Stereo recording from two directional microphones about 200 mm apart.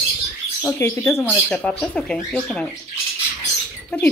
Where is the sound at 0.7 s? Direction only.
10° left (ahead or behind).